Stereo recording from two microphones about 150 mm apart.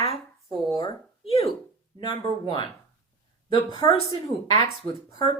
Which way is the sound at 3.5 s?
35° left (ahead or behind).